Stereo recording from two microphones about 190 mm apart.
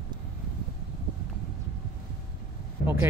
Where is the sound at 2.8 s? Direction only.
55° left (ahead or behind).